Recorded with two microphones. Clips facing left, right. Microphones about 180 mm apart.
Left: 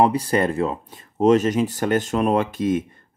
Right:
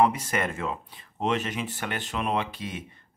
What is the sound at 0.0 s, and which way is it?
Speech, 35° left (ahead or behind).